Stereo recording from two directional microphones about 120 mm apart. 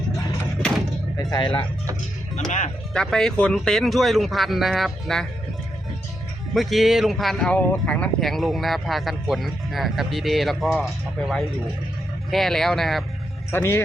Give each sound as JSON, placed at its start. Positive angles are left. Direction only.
{"t": 1.3, "sound": "speech", "side_deg": 40}
{"t": 2.9, "sound": "speech", "side_deg": 5}
{"t": 6.5, "sound": "speech", "side_deg": 0}
{"t": 7.5, "sound": "speech", "side_deg": 15}
{"t": 13.5, "sound": "speech", "side_deg": 20}